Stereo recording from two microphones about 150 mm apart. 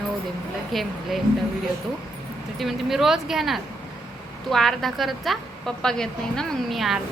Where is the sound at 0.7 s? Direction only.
Centre (ahead or behind).